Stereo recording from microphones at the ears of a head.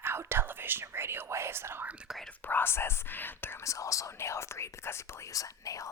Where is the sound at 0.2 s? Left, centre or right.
Right.